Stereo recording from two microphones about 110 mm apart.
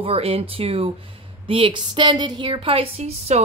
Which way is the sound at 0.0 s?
60° right (ahead or behind).